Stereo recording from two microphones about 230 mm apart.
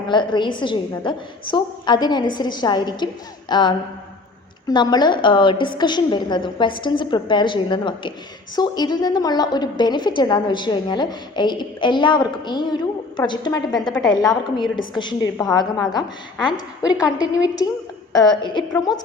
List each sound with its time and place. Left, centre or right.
0.1 s a woman's voice: centre